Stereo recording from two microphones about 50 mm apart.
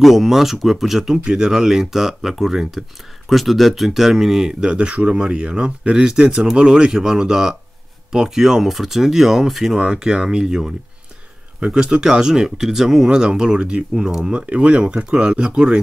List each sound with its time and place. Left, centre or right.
0.0 s speech: centre
14.3 s speech: right